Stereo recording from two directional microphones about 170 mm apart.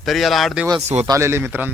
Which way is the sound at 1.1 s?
15° right (ahead or behind).